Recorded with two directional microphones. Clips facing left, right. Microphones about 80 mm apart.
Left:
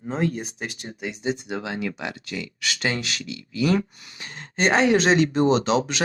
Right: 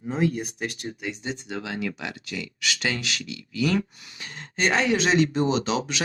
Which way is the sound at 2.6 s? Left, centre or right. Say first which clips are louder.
Left 2 dB; left.